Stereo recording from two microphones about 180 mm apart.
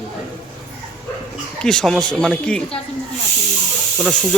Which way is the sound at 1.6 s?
5° left (ahead or behind).